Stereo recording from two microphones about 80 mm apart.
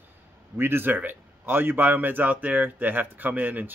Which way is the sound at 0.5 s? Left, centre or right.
Right.